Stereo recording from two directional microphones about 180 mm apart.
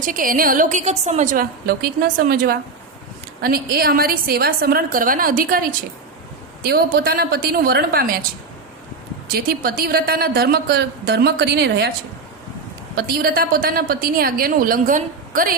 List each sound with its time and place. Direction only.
0.0 s a woman's voice: 50° right (ahead or behind)
9.3 s a woman's voice: 55° right (ahead or behind)
13.0 s a woman's voice: 55° right (ahead or behind)